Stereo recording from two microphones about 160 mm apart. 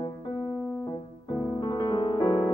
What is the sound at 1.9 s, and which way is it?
Music, 30° left (ahead or behind).